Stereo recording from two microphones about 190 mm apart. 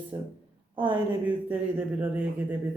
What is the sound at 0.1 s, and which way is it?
Speech, 20° right (ahead or behind).